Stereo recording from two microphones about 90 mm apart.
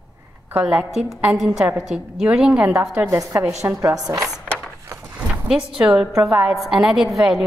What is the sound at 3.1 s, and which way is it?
A woman's voice, 35° right (ahead or behind).